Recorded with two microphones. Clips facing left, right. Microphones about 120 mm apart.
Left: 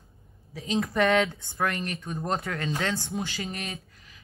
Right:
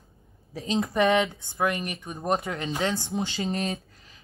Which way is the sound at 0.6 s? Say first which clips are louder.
Right 1 dB; 25° right (ahead or behind).